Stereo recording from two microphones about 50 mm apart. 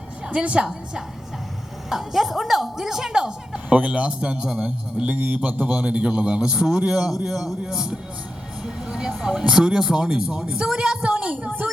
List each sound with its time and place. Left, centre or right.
0.3 s a man's voice: right
1.9 s a woman's voice: centre
3.7 s a man's voice: right
4.9 s a man's voice: right
8.6 s vehicle: centre
9.4 s a woman's voice: centre
11.4 s a child's voice: right